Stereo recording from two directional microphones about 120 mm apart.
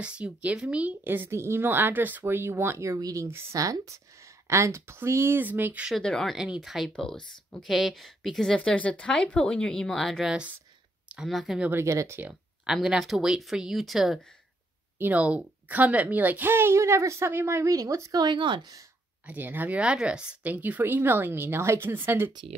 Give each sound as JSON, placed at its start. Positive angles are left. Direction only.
{"t": 0.0, "sound": "a woman's voice", "side_deg": -10}
{"t": 5.9, "sound": "speech", "side_deg": 5}
{"t": 11.7, "sound": "a woman's voice", "side_deg": -25}
{"t": 12.3, "sound": "speech", "side_deg": -5}
{"t": 15.0, "sound": "a woman's voice", "side_deg": -15}
{"t": 19.2, "sound": "speech", "side_deg": -15}